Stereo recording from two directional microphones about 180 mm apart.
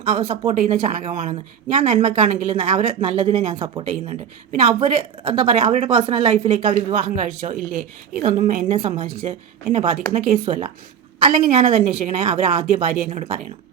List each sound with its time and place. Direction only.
0.2 s a woman's voice: 35° right (ahead or behind)